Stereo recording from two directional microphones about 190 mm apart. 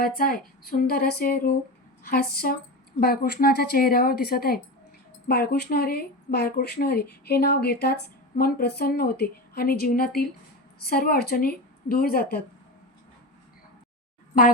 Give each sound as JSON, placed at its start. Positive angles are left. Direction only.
{"t": 0.2, "sound": "a woman's voice", "side_deg": 50}